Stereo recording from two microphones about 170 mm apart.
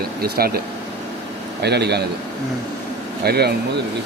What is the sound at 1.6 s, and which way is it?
Speech, 75° right (ahead or behind).